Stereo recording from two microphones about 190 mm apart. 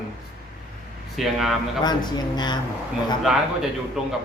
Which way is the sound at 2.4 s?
25° left (ahead or behind).